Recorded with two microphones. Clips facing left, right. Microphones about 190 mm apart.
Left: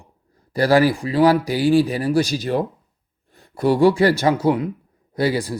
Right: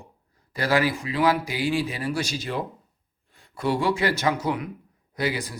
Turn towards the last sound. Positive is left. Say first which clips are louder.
# left 7 dB
turn(degrees=35)  # may be behind; listen again after turning